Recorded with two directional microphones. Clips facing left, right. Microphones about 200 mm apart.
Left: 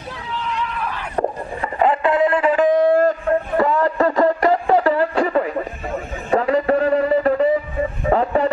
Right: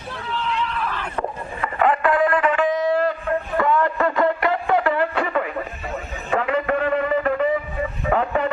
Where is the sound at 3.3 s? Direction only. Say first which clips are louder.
Left 3 dB; 35° left (ahead or behind).